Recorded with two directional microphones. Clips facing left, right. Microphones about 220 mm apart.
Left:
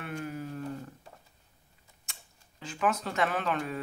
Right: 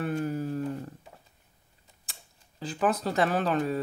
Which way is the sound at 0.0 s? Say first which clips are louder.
Right 7 dB; 35° right (ahead or behind).